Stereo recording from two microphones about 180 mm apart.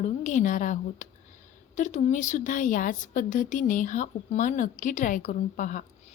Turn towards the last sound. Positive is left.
turn(degrees=45)  # may be behind; listen again after turning